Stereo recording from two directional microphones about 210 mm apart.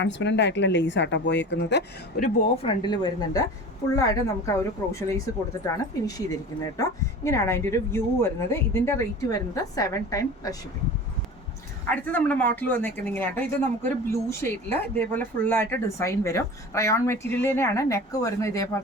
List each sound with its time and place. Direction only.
0.0 s a woman's voice: 55° left (ahead or behind)
2.6 s speech: 20° left (ahead or behind)
7.3 s speech: 15° left (ahead or behind)
11.9 s speech: 5° left (ahead or behind)